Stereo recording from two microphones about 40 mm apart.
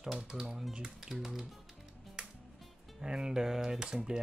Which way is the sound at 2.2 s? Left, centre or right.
Right.